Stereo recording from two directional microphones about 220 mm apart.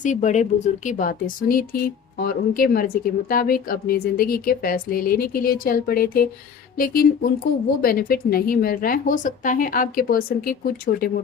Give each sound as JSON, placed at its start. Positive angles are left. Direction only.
{"t": 0.0, "sound": "a woman's voice", "side_deg": 35}